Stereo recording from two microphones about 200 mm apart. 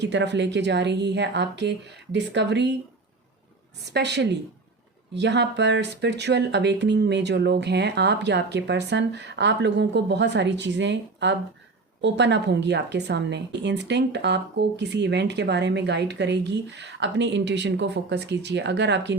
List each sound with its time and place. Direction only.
0.0 s a woman's voice: 60° right (ahead or behind)
3.8 s a woman's voice: 55° right (ahead or behind)